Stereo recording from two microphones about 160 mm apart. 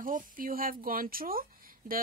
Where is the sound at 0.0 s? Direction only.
60° right (ahead or behind).